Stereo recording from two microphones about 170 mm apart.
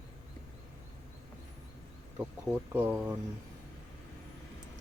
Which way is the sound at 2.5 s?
10° right (ahead or behind).